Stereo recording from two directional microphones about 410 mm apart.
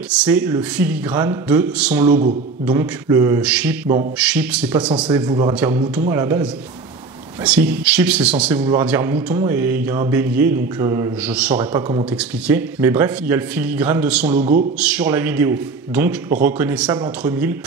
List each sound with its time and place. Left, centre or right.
0.2 s a man's voice: centre
3.8 s a man's voice: centre
4.2 s a man's voice: centre
14.4 s a man's voice: centre
14.8 s a man's voice: centre